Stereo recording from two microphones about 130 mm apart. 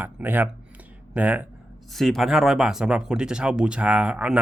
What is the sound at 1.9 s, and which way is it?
Speech, centre (ahead or behind).